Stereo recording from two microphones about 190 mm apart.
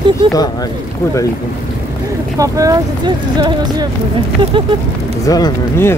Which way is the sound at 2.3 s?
15° right (ahead or behind).